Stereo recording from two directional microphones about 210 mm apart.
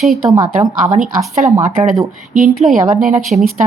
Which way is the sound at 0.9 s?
35° right (ahead or behind).